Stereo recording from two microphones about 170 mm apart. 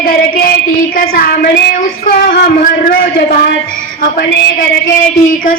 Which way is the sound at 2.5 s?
55° left (ahead or behind).